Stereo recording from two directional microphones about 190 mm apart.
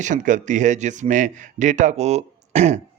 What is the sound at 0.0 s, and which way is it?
Speech, 40° right (ahead or behind).